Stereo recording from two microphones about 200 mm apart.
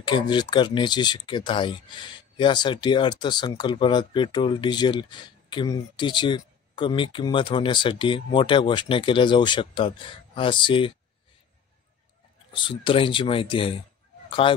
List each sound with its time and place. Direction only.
0.0 s speech: 20° left (ahead or behind)
12.5 s speech: 25° left (ahead or behind)